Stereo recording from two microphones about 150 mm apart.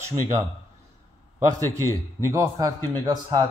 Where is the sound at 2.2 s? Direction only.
20° right (ahead or behind).